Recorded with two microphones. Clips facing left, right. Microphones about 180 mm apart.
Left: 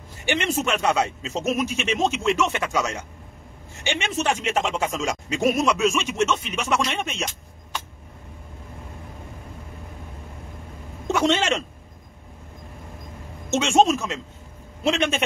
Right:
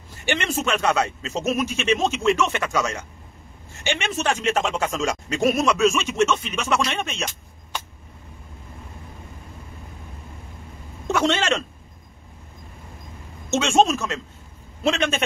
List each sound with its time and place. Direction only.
0.2 s speech: 15° left (ahead or behind)
11.1 s speech: 15° left (ahead or behind)
13.5 s a man's voice: 15° left (ahead or behind)